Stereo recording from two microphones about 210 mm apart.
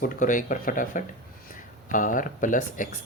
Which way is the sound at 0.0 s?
40° left (ahead or behind).